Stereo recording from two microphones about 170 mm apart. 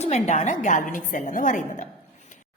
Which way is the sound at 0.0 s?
40° left (ahead or behind).